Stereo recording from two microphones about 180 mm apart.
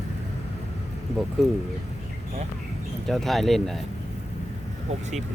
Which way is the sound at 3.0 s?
Centre (ahead or behind).